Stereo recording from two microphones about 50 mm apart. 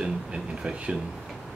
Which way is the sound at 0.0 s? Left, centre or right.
Centre.